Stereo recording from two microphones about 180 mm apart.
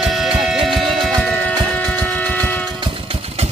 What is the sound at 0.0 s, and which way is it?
Music, centre (ahead or behind).